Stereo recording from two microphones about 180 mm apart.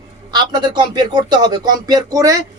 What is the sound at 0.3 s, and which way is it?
Speech, 25° right (ahead or behind).